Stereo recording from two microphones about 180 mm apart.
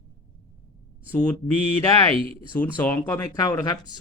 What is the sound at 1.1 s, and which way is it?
Speech, 10° left (ahead or behind).